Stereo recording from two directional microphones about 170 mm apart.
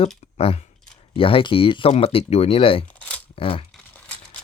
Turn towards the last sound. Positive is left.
turn(degrees=35)  # may be behind; listen again after turning